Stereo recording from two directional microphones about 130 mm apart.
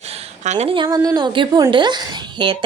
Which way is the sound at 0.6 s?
40° right (ahead or behind).